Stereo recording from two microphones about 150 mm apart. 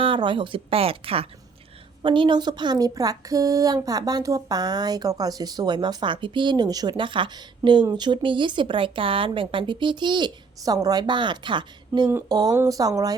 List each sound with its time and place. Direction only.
0.0 s speech: 35° right (ahead or behind)